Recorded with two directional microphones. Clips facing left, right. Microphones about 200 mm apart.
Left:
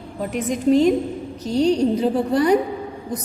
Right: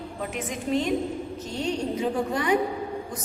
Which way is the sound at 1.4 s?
35° left (ahead or behind).